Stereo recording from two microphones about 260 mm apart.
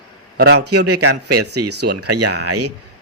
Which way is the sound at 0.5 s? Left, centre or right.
Right.